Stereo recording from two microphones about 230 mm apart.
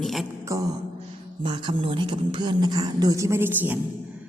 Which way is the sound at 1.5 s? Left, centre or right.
Centre.